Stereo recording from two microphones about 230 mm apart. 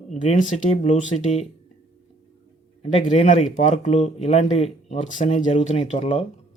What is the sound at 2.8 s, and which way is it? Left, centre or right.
Speech, left.